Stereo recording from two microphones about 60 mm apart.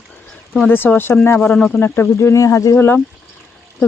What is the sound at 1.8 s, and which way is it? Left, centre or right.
Speech, left.